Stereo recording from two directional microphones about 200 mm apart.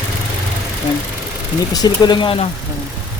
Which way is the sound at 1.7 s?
20° left (ahead or behind).